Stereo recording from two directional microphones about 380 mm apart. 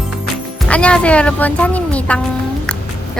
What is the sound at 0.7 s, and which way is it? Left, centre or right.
Speech, centre.